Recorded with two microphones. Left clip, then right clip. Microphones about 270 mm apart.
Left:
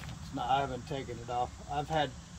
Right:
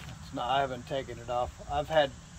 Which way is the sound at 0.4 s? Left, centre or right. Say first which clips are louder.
Right 2 dB; centre.